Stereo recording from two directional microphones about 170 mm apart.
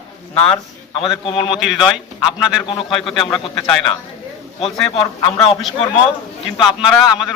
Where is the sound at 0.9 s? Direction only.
30° left (ahead or behind).